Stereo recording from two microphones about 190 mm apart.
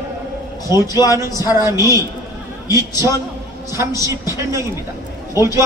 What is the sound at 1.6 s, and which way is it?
Speech, 15° right (ahead or behind).